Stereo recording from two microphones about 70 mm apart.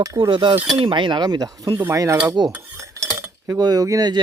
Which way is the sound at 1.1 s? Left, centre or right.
Right.